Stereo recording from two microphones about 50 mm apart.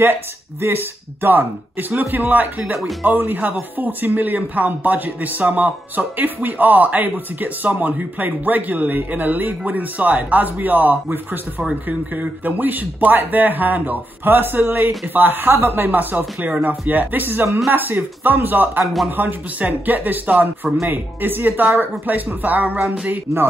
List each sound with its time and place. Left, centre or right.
0.0 s speech: right
12.2 s speech: right